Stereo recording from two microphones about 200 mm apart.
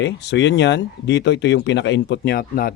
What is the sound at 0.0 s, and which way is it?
Speech, 60° left (ahead or behind).